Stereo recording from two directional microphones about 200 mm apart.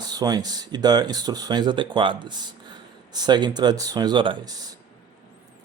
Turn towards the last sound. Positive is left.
turn(degrees=-20)  # may be behind; listen again after turning